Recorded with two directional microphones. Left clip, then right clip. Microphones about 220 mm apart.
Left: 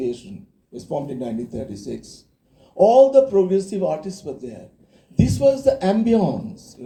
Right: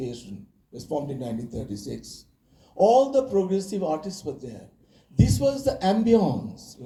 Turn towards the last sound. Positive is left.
turn(degrees=50)  # may be behind; listen again after turning